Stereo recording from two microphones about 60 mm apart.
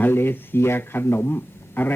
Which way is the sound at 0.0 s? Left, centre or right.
Left.